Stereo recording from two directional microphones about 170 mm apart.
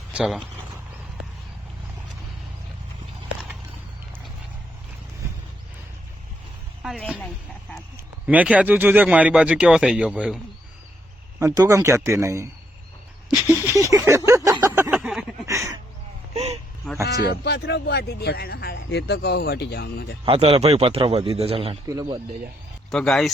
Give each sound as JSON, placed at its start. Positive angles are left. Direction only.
{"t": 0.1, "sound": "speech", "side_deg": -5}
{"t": 6.8, "sound": "speech", "side_deg": 5}
{"t": 8.3, "sound": "speech", "side_deg": -10}
{"t": 11.3, "sound": "speech", "side_deg": -20}
{"t": 13.9, "sound": "a sound", "side_deg": -15}
{"t": 14.8, "sound": "a sound", "side_deg": -10}
{"t": 15.4, "sound": "a sound", "side_deg": -15}
{"t": 16.3, "sound": "vehicle", "side_deg": -40}
{"t": 17.1, "sound": "speech", "side_deg": 75}
{"t": 20.2, "sound": "a man's voice", "side_deg": -35}
{"t": 22.9, "sound": "speech", "side_deg": 5}